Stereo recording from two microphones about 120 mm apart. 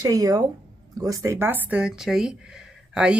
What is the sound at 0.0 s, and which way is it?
Speech, 30° right (ahead or behind).